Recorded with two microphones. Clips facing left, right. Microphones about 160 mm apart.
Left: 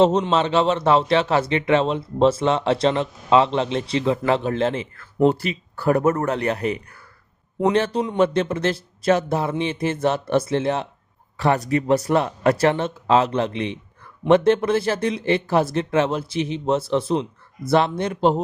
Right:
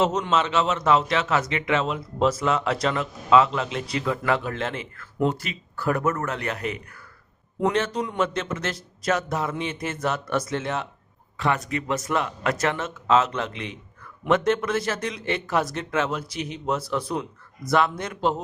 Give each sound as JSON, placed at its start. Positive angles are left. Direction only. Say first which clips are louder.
{"t": 0.0, "sound": "speech", "louder": "left 5 dB", "side_deg": 30}